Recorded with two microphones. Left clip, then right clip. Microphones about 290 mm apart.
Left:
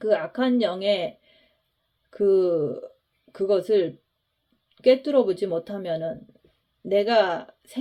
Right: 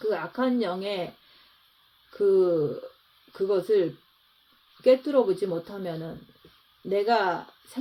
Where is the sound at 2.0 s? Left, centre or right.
Left.